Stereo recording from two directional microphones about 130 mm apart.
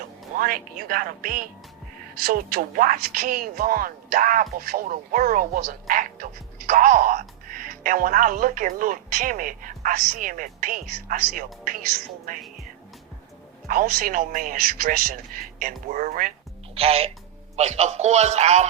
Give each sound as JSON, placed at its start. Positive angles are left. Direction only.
{"t": 0.3, "sound": "speech", "side_deg": -90}
{"t": 13.7, "sound": "speech", "side_deg": -90}
{"t": 16.7, "sound": "a man's voice", "side_deg": -50}